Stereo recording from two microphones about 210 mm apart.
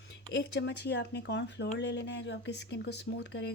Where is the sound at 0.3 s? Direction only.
55° left (ahead or behind).